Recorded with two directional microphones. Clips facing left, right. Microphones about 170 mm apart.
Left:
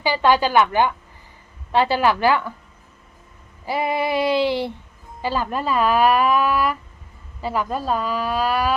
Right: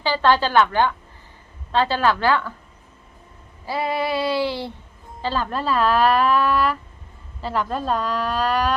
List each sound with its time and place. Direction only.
0.0 s speech: 15° left (ahead or behind)
3.7 s speech: 15° left (ahead or behind)